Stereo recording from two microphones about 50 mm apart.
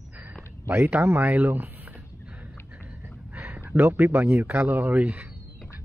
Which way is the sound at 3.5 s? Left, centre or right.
Right.